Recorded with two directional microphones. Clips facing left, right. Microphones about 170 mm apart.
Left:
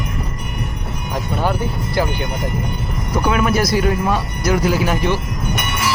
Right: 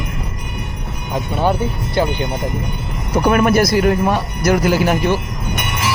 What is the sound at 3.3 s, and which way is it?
Speech, 50° right (ahead or behind).